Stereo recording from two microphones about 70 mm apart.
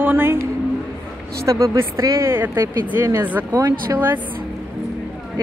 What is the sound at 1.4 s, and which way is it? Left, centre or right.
Speech, right.